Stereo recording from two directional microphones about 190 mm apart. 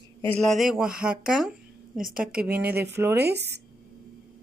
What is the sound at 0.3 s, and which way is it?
Speech, centre (ahead or behind).